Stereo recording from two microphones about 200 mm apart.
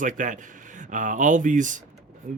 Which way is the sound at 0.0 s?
40° right (ahead or behind).